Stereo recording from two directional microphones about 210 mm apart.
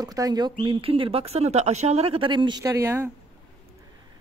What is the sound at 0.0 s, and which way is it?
Speech, 15° right (ahead or behind).